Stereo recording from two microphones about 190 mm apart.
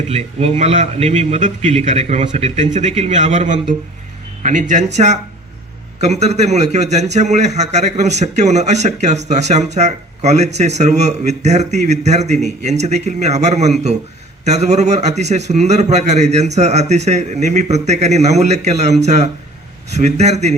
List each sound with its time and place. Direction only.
0.1 s a man's voice: 35° right (ahead or behind)
4.7 s a man's voice: 35° right (ahead or behind)